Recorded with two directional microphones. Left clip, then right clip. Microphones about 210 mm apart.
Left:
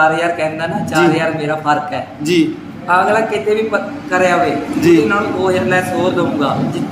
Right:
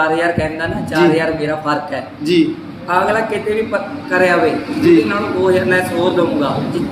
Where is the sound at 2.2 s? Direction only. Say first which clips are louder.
Even; 15° left (ahead or behind).